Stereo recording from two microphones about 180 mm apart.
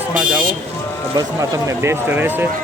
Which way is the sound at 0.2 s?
5° right (ahead or behind).